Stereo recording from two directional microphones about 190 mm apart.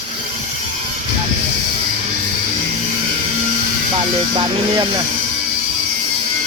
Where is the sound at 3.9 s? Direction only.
25° right (ahead or behind).